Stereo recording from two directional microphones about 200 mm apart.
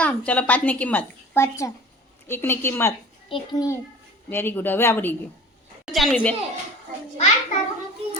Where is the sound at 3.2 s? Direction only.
25° left (ahead or behind).